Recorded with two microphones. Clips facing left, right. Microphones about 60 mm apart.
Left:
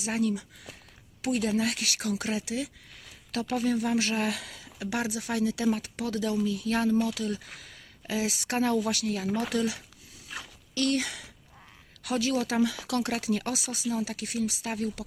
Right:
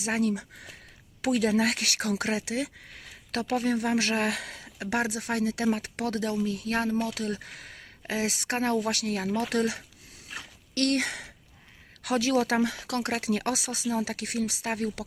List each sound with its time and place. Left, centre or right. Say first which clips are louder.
0.0 s speech: right 1 dB; right
1.4 s speech: right 3 dB; right
6.4 s speech: left 1 dB; right
8.9 s speech: even; right
12.0 s speech: right 3 dB; right
12.5 s speech: left 1 dB; right